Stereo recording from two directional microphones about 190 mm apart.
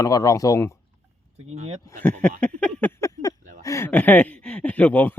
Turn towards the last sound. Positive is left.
turn(degrees=10)  # may be behind; listen again after turning